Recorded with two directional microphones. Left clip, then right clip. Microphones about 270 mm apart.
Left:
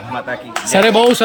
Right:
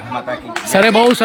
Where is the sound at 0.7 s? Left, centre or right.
Centre.